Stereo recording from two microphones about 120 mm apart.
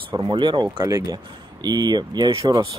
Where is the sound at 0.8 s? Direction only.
25° right (ahead or behind).